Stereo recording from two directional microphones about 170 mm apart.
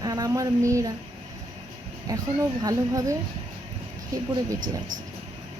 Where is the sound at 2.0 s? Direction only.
20° right (ahead or behind).